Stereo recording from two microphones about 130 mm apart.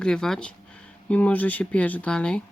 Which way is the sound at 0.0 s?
5° left (ahead or behind).